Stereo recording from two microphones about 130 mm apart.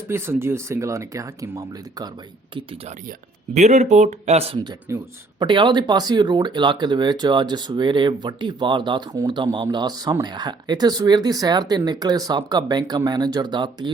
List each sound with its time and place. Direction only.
0.1 s speech: 20° right (ahead or behind)
3.5 s speech: 60° right (ahead or behind)
4.9 s speech: 25° right (ahead or behind)
5.4 s speech: 40° right (ahead or behind)